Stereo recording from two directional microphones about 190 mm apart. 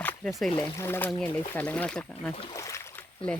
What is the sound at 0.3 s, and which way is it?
Speech, centre (ahead or behind).